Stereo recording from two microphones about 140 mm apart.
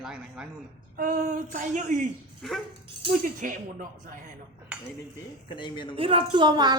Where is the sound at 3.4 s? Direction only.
65° right (ahead or behind).